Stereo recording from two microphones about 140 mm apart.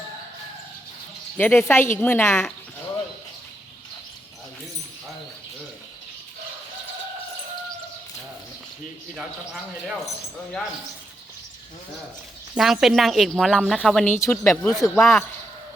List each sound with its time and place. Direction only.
1.4 s a woman's voice: 15° left (ahead or behind)
9.1 s speech: 5° right (ahead or behind)
12.5 s a woman's voice: centre (ahead or behind)
14.2 s a woman's voice: 15° left (ahead or behind); by 15.2 s centre (ahead or behind)